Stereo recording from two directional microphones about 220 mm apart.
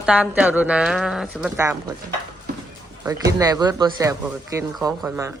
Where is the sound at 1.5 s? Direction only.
15° right (ahead or behind).